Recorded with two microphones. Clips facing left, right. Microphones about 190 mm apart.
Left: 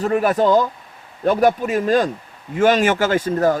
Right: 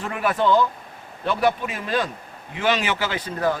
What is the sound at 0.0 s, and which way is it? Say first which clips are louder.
Speech: left 6 dB; 40° left (ahead or behind).